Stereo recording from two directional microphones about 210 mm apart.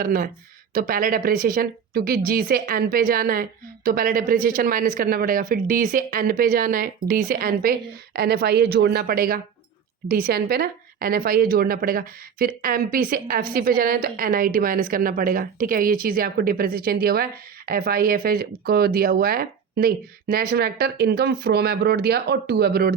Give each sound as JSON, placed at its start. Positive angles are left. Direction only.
{"t": 0.0, "sound": "a woman's voice", "side_deg": -40}